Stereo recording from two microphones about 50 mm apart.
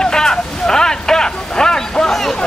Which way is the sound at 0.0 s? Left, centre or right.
Centre.